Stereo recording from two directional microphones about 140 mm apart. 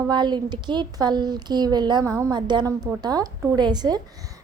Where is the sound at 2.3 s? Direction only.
30° right (ahead or behind).